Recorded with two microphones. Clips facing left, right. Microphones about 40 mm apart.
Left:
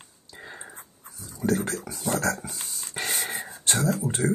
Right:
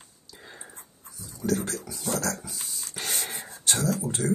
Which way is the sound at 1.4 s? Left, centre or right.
Left.